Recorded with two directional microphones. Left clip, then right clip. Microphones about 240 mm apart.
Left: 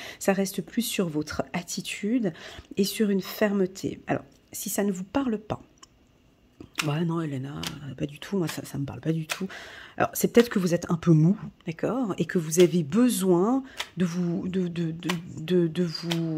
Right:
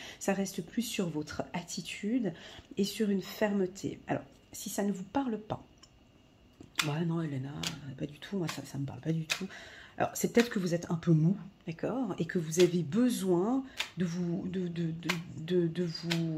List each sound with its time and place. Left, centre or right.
0.0 s speech: left
6.9 s speech: left